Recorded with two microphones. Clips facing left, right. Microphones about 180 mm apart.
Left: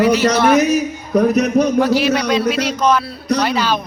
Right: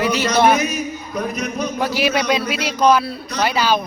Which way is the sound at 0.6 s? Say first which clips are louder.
Left 7 dB; 75° left (ahead or behind).